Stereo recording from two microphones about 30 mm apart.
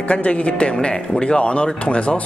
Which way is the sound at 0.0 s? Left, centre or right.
Left.